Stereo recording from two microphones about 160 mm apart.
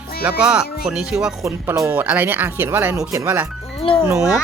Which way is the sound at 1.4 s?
20° right (ahead or behind).